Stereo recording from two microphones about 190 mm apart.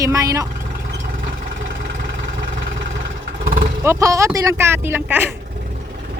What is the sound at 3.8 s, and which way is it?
Speech, 15° right (ahead or behind).